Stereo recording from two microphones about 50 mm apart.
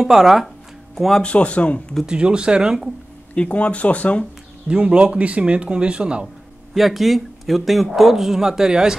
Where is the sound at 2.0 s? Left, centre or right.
Centre.